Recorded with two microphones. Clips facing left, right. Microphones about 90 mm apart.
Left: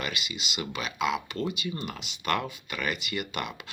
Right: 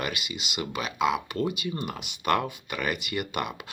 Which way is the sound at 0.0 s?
50° right (ahead or behind).